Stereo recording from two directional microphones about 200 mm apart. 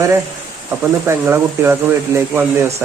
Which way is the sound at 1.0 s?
10° right (ahead or behind).